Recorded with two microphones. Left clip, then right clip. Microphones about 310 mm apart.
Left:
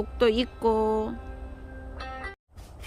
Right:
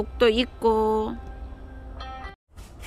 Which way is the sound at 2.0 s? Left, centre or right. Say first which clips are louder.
Left 1 dB; centre.